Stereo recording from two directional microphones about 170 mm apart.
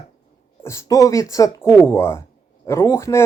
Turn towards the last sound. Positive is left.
turn(degrees=15)  # may be behind; listen again after turning